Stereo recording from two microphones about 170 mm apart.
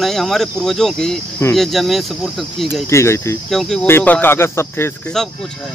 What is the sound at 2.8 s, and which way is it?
Speech, 15° left (ahead or behind).